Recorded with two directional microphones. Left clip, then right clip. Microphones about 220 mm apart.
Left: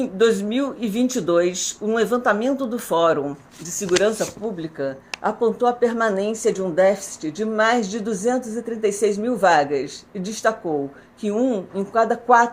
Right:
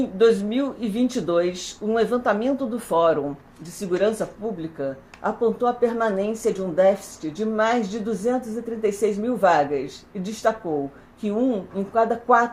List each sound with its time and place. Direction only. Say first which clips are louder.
0.2 s speech: even; 40° left (ahead or behind)